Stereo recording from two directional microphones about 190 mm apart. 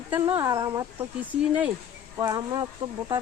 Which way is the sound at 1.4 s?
5° right (ahead or behind).